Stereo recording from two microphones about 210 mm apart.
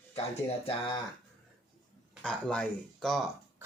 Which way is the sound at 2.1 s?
5° left (ahead or behind).